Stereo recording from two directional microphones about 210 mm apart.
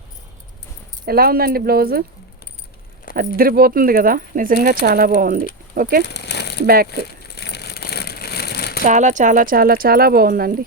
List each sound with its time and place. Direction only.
1.0 s speech: 45° right (ahead or behind)
3.2 s speech: 45° right (ahead or behind)
6.1 s coin: 55° left (ahead or behind)
7.0 s crumpling: 55° left (ahead or behind)
8.8 s speech: 35° right (ahead or behind)